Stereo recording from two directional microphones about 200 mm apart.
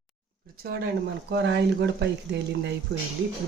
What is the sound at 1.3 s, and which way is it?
Speech, 60° right (ahead or behind).